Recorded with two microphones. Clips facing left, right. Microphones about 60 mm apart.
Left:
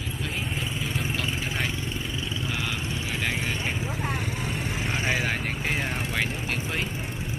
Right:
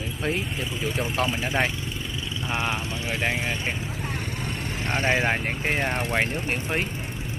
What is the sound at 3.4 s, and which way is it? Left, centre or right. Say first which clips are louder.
Speech: right 1 dB; centre.